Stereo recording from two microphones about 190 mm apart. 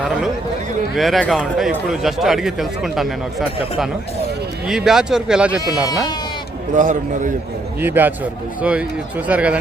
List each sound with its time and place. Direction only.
0.9 s a man's voice: centre (ahead or behind)
4.6 s a man's voice: 5° right (ahead or behind)
6.7 s a man's voice: 40° right (ahead or behind)
7.8 s a man's voice: 10° right (ahead or behind)